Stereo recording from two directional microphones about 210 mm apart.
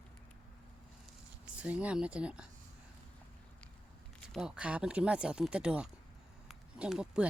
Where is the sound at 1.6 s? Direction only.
5° right (ahead or behind).